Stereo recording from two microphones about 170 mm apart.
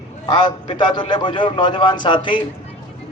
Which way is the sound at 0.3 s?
25° left (ahead or behind).